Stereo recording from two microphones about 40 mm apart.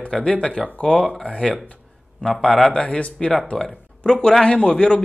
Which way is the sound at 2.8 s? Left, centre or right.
Left.